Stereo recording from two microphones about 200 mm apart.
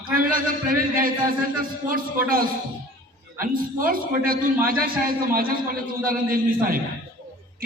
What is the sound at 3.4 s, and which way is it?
A man's voice, 45° right (ahead or behind).